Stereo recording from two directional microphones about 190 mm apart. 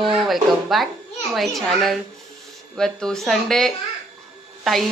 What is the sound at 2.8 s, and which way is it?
Speech, 5° left (ahead or behind).